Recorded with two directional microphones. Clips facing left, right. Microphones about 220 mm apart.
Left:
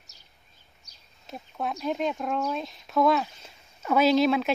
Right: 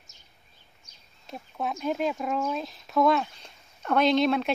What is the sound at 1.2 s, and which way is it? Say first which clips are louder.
Speech: even; centre (ahead or behind).